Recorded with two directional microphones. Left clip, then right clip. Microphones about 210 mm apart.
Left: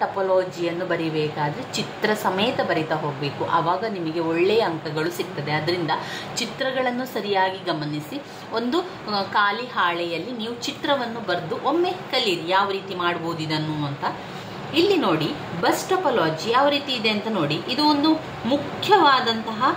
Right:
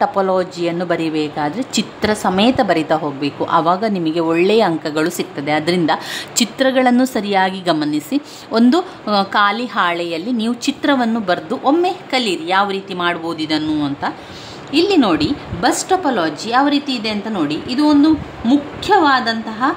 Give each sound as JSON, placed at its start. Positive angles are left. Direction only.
{"t": 0.0, "sound": "speech", "side_deg": -45}
{"t": 14.7, "sound": "a woman's voice", "side_deg": -40}